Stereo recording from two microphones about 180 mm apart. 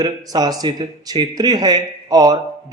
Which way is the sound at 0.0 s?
20° right (ahead or behind).